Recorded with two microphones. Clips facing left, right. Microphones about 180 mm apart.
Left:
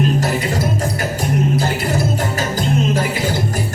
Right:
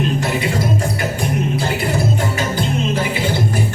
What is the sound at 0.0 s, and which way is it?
Music, 40° left (ahead or behind).